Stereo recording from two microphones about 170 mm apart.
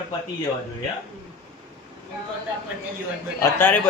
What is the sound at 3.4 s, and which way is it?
Speech, 10° left (ahead or behind).